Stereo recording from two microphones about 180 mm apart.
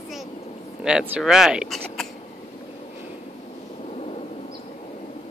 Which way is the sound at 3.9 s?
35° left (ahead or behind).